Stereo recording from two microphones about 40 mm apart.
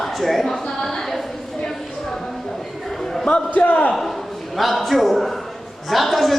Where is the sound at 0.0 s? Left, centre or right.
Centre.